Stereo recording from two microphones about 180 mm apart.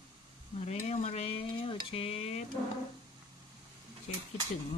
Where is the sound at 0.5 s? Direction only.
40° left (ahead or behind).